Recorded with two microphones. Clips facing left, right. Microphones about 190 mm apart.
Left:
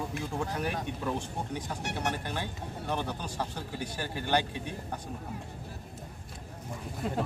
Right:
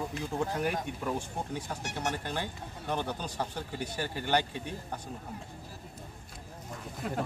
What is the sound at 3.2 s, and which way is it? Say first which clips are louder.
Speech: even; 10° left (ahead or behind).